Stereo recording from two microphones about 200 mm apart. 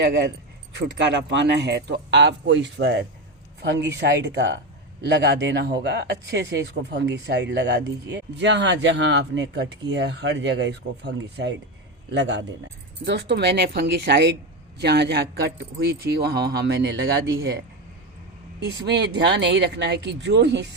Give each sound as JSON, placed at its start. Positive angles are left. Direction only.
{"t": 0.0, "sound": "speech", "side_deg": -60}
{"t": 18.6, "sound": "speech", "side_deg": -60}